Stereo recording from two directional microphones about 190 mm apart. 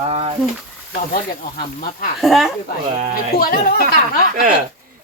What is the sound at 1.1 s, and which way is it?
Speech, 50° left (ahead or behind).